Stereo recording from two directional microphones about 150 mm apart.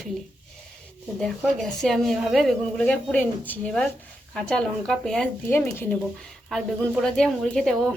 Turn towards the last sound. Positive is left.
turn(degrees=5)  # may be behind; listen again after turning